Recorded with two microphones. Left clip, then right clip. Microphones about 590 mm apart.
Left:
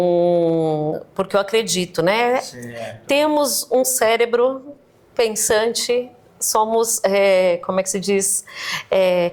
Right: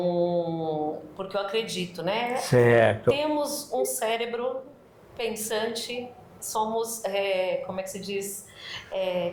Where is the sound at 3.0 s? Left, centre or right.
Left.